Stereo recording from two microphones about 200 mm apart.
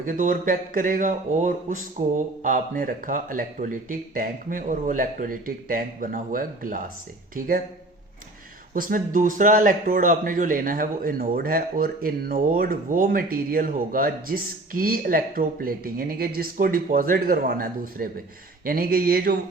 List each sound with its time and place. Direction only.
0.0 s speech: 40° right (ahead or behind)
8.7 s speech: 45° right (ahead or behind)